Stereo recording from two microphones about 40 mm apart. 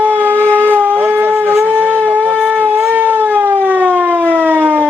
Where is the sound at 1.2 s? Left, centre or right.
Right.